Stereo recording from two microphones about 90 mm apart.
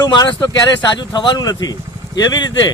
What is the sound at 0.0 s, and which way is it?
Speech, 55° left (ahead or behind).